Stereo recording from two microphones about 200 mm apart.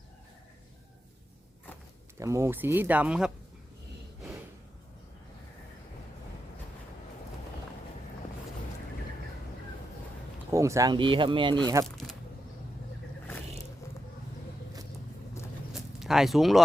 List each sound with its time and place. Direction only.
2.1 s speech: 15° right (ahead or behind)
10.5 s speech: 15° right (ahead or behind)
15.7 s a sound: centre (ahead or behind)